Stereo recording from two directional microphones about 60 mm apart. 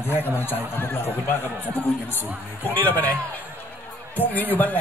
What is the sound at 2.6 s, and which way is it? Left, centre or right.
Speech, left.